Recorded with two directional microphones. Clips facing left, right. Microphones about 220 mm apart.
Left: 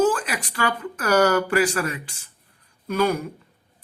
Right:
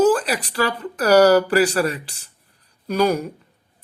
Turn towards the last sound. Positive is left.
turn(degrees=-35)  # may be behind; listen again after turning